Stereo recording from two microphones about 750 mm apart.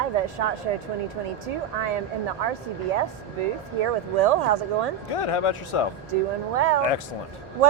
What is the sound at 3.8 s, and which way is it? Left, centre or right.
Speech, right.